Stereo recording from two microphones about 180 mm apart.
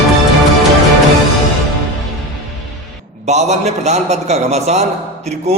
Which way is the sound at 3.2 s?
40° right (ahead or behind).